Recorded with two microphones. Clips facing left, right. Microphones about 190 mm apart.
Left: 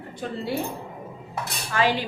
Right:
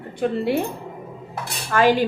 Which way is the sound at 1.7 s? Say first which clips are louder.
Right 6 dB; 50° right (ahead or behind).